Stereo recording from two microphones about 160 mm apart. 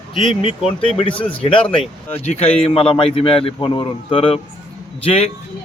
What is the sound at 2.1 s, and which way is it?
A man's voice, 40° left (ahead or behind).